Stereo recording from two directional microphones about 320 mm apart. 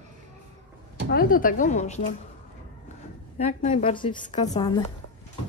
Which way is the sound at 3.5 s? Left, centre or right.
Left.